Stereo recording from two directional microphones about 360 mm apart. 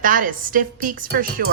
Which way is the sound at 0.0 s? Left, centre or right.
Right.